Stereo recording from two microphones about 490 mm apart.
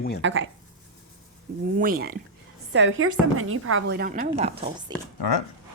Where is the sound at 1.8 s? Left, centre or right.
Centre.